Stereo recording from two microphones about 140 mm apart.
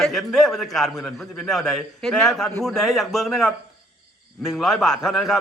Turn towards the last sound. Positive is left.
turn(degrees=0)  # may be behind; listen again after turning